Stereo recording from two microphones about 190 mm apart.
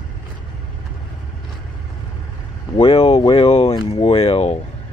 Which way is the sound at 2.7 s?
30° left (ahead or behind).